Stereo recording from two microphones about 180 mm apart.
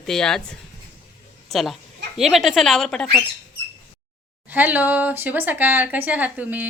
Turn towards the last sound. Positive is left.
turn(degrees=-10)  # may be behind; listen again after turning